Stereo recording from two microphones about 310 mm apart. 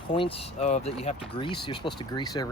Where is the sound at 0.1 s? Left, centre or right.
Centre.